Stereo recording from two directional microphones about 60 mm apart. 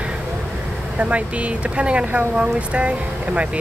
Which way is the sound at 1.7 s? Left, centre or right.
Centre.